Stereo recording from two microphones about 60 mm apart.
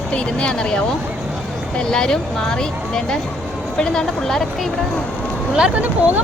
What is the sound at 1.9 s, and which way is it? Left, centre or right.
Speech, centre.